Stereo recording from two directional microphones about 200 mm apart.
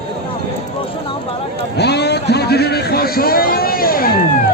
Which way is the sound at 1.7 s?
55° left (ahead or behind).